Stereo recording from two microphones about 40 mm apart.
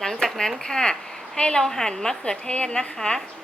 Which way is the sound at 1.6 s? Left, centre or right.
Centre.